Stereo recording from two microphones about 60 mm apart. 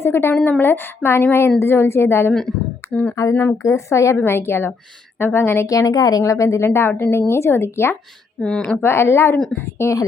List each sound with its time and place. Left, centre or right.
0.0 s a woman's voice: left
2.9 s speech: left
3.6 s a woman's voice: left
4.2 s a woman's voice: left
5.6 s speech: left
6.7 s speech: left
8.4 s a woman's voice: centre
8.8 s speech: left